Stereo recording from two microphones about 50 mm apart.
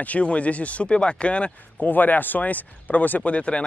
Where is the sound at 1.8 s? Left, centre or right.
Left.